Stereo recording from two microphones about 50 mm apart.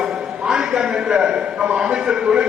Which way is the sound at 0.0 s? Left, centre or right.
Centre.